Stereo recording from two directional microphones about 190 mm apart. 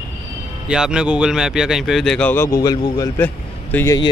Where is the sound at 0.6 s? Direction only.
5° right (ahead or behind).